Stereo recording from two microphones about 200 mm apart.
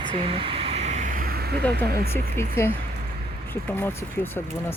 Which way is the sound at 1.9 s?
50° right (ahead or behind).